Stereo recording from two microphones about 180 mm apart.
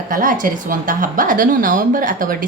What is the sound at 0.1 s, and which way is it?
A woman's voice, 50° right (ahead or behind).